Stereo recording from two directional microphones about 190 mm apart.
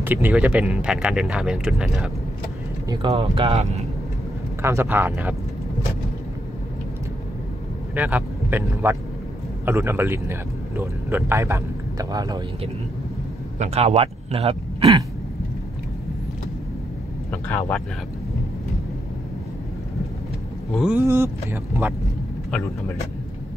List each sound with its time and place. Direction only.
0.0 s speech: 10° right (ahead or behind)
2.9 s speech: 25° right (ahead or behind)
4.6 s speech: 15° right (ahead or behind)
7.9 s speech: 10° right (ahead or behind)
13.6 s a man's voice: 35° right (ahead or behind)
17.3 s speech: 10° left (ahead or behind)
20.7 s speech: 5° right (ahead or behind)